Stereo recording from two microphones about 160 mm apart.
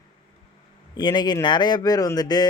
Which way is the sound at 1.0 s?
25° left (ahead or behind).